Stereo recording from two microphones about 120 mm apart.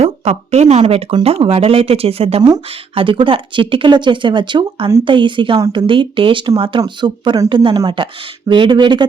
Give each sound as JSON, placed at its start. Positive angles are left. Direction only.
{"t": 0.0, "sound": "speech", "side_deg": -65}